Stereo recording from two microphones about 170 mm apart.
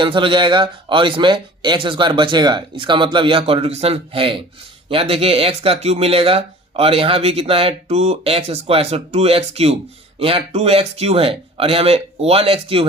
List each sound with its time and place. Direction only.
0.0 s speech: 30° right (ahead or behind)